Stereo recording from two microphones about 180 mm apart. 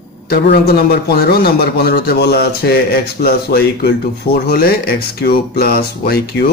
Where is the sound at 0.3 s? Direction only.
60° left (ahead or behind).